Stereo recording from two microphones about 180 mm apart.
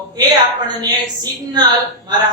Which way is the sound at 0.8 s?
20° right (ahead or behind).